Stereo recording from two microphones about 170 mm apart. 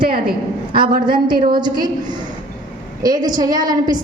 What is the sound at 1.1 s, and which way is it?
Speech, 25° right (ahead or behind).